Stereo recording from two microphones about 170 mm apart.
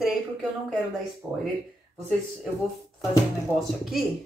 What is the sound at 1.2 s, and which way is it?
Speech, 20° right (ahead or behind).